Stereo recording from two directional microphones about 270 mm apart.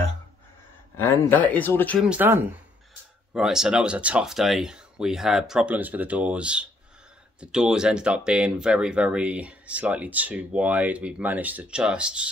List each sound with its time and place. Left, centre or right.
0.9 s speech: centre